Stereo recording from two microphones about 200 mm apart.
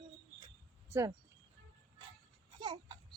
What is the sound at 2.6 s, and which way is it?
Babbling, 25° right (ahead or behind).